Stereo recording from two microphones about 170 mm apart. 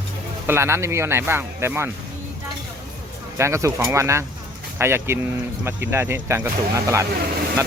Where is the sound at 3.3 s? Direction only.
15° right (ahead or behind).